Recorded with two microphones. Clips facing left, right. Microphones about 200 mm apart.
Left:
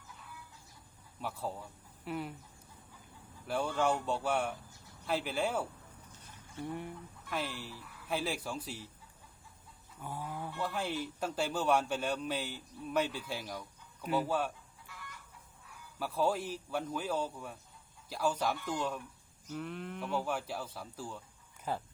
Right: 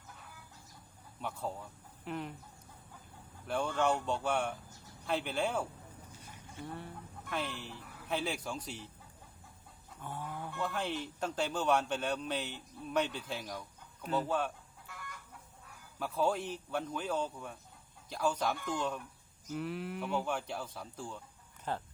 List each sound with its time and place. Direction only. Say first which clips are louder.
1.2 s a man's voice: even; 5° left (ahead or behind)
3.4 s a man's voice: even; 5° left (ahead or behind)
6.7 s a man's voice: left 4 dB; 15° left (ahead or behind)
7.3 s speech: even; 5° left (ahead or behind)
10.0 s a man's voice: left 1 dB; 10° left (ahead or behind)
14.8 s chicken: right 3 dB; 50° right (ahead or behind)
16.0 s a man's voice: even; 5° left (ahead or behind)